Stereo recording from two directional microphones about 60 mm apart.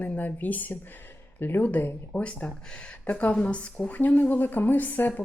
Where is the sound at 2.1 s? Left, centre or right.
Left.